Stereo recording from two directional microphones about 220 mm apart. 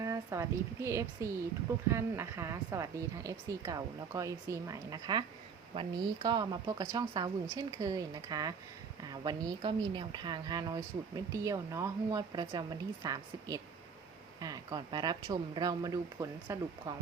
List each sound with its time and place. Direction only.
0.0 s a woman's voice: 15° right (ahead or behind)